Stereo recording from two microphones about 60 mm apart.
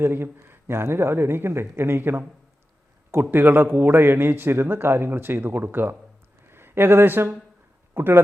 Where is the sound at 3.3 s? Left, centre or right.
Right.